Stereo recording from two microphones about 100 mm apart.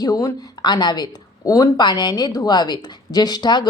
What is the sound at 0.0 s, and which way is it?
Speech, 35° left (ahead or behind).